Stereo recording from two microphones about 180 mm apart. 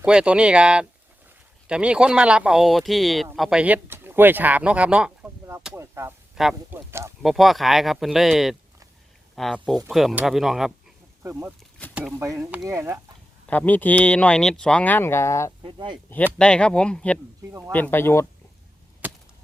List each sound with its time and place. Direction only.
0.0 s speech: 5° right (ahead or behind)
6.3 s speech: centre (ahead or behind)
11.2 s speech: 15° right (ahead or behind)
13.5 s speech: 10° left (ahead or behind)
15.6 s speech: 25° right (ahead or behind)
16.0 s speech: 10° left (ahead or behind)